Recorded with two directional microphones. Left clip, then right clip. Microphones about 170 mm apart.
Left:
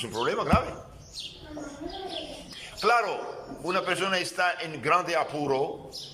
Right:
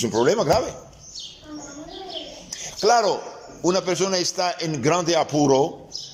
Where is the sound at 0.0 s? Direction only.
45° right (ahead or behind).